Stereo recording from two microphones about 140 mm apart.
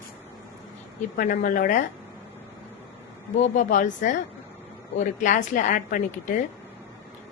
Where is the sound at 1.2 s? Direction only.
80° left.